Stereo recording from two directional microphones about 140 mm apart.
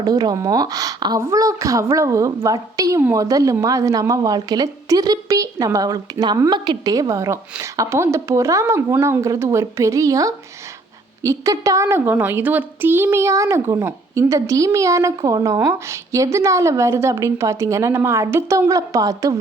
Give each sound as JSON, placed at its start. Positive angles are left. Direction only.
{"t": 0.0, "sound": "a woman's voice", "side_deg": -25}